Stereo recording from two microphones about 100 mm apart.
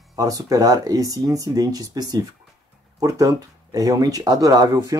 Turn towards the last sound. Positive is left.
turn(degrees=-40)  # may be behind; listen again after turning